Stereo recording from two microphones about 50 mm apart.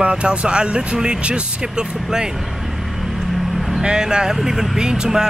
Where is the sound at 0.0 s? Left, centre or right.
Right.